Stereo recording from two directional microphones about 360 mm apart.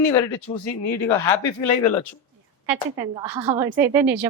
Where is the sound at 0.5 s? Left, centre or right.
Centre.